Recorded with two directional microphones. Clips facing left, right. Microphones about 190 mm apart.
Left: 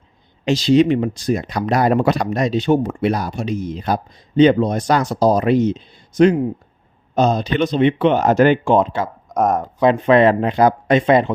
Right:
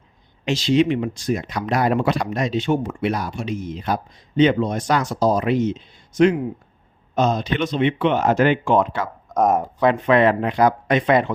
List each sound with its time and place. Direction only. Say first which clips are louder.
0.4 s speech: left 4 dB; 35° left (ahead or behind)
8.7 s speech: left 3 dB; 25° left (ahead or behind)
9.3 s a sound: left 1 dB; 15° left (ahead or behind)
9.8 s speech: left 4 dB; 30° left (ahead or behind)